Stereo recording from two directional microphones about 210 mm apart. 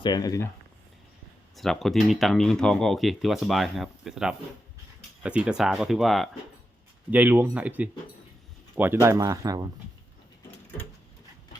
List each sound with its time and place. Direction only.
0.0 s speech: 20° left (ahead or behind)
1.5 s speech: centre (ahead or behind); by 9.6 s 15° right (ahead or behind)